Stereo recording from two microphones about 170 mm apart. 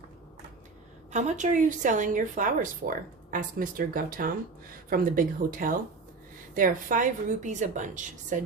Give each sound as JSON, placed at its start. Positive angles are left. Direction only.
{"t": 1.1, "sound": "a woman's voice", "side_deg": -45}